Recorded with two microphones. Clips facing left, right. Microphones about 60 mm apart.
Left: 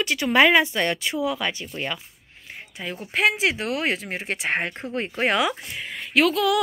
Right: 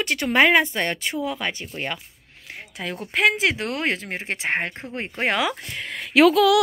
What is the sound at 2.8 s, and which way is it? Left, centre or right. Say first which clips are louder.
Speech: right 2 dB; right.